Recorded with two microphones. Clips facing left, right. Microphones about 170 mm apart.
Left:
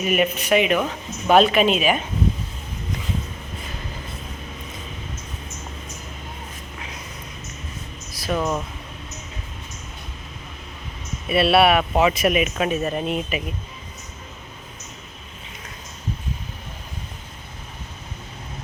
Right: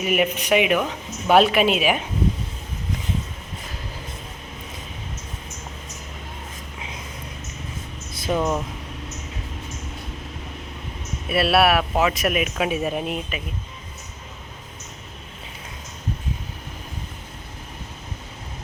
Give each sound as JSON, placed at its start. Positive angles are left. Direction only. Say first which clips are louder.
{"t": 0.0, "sound": "speech", "louder": "left 1 dB", "side_deg": -10}
{"t": 8.1, "sound": "speech", "louder": "right 1 dB", "side_deg": -20}
{"t": 11.3, "sound": "speech", "louder": "left 2 dB", "side_deg": 0}